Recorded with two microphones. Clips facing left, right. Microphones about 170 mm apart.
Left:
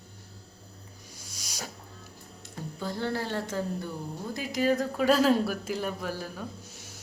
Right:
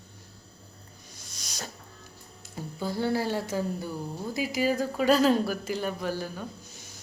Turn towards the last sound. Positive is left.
turn(degrees=5)  # may be behind; listen again after turning